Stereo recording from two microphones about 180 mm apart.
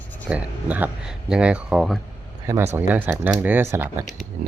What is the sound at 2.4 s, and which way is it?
Speech, 15° right (ahead or behind).